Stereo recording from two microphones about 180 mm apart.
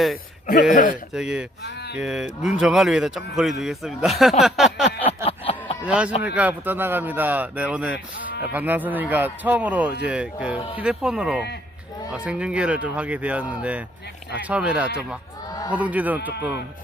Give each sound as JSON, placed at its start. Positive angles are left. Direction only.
{"t": 0.7, "sound": "speech", "side_deg": 45}
{"t": 1.1, "sound": "speech", "side_deg": -5}
{"t": 1.7, "sound": "speech", "side_deg": 65}
{"t": 2.0, "sound": "speech", "side_deg": -5}
{"t": 5.0, "sound": "a sound", "side_deg": 30}
{"t": 5.8, "sound": "speech", "side_deg": -5}